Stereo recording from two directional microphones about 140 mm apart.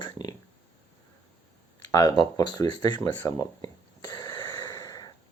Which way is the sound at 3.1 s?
20° left (ahead or behind).